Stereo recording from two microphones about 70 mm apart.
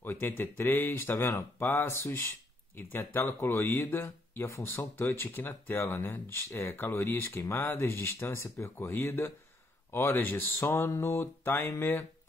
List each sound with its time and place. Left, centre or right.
0.0 s speech: left
10.7 s speech: left